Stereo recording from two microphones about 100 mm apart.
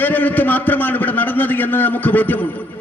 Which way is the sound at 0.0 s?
20° left (ahead or behind).